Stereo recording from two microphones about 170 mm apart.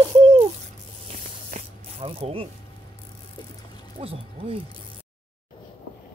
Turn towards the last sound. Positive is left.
turn(degrees=-35)  # may be behind; listen again after turning